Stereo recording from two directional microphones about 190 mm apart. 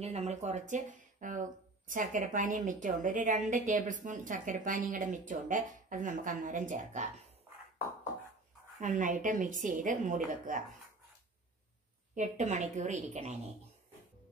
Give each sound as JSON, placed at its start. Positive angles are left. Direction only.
{"t": 0.0, "sound": "speech", "side_deg": -35}
{"t": 8.8, "sound": "speech", "side_deg": -45}
{"t": 12.2, "sound": "a woman's voice", "side_deg": -40}